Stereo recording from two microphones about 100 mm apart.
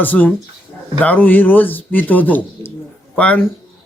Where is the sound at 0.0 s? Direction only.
15° left (ahead or behind).